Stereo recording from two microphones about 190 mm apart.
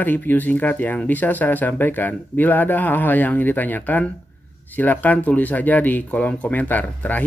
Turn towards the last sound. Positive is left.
turn(degrees=10)  # may be behind; listen again after turning